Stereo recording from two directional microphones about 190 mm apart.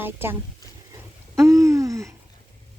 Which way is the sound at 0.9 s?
15° right (ahead or behind).